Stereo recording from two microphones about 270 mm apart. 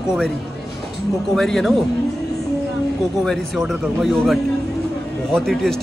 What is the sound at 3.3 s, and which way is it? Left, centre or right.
Speech, centre.